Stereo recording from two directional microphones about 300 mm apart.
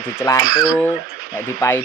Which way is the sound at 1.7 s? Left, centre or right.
Centre.